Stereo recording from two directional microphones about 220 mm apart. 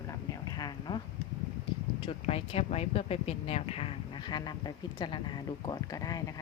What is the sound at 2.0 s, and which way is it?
Speech, 25° left (ahead or behind).